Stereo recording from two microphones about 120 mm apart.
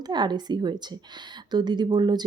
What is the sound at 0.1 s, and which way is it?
Speech, 35° right (ahead or behind).